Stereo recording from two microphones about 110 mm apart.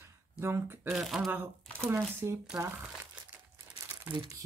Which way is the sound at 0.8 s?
Centre (ahead or behind).